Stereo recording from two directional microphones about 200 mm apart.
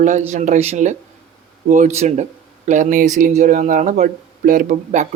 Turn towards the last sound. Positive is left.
turn(degrees=-40)  # may be behind; listen again after turning